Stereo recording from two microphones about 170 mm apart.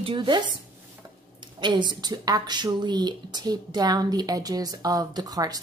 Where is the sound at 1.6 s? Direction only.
25° right (ahead or behind).